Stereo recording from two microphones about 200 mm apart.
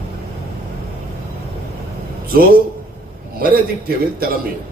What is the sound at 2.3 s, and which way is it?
A man's voice, 45° right (ahead or behind).